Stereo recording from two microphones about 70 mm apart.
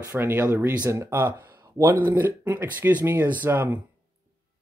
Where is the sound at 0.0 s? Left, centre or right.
Right.